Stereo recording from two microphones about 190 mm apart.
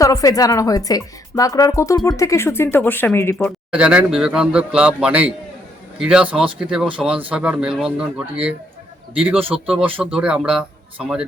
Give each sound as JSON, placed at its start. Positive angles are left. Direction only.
{"t": 0.0, "sound": "speech", "side_deg": 15}
{"t": 3.7, "sound": "speech", "side_deg": -5}
{"t": 9.4, "sound": "speech", "side_deg": -30}
{"t": 9.7, "sound": "speech", "side_deg": -5}